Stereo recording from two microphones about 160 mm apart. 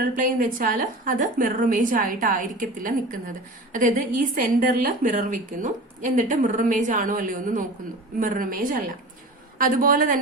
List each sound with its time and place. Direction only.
0.0 s a woman's voice: 55° right (ahead or behind)